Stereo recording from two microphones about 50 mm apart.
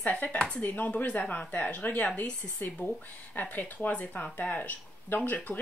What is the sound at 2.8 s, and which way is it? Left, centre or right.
Speech, left.